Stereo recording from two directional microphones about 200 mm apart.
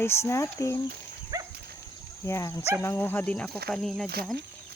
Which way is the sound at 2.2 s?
15° left (ahead or behind).